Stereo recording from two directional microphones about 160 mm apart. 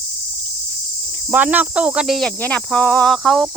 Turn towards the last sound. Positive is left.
turn(degrees=0)  # may be behind; listen again after turning